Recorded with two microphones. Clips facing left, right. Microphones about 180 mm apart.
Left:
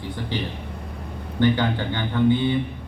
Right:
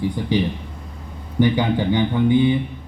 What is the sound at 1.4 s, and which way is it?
A man's voice, 15° right (ahead or behind).